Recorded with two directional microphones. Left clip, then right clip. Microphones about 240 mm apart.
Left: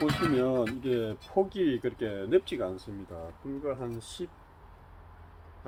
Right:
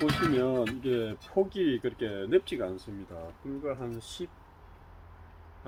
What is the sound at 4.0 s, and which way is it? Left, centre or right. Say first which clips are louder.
Speech: even; centre.